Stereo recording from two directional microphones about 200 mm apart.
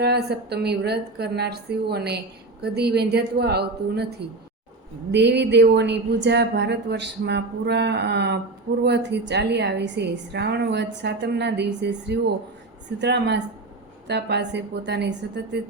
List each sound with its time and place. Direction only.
0.0 s a woman's voice: 55° right (ahead or behind)
5.1 s a woman's voice: 60° right (ahead or behind)